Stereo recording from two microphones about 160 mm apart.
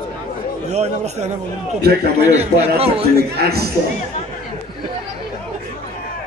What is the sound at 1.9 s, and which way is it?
Speech, 80° right.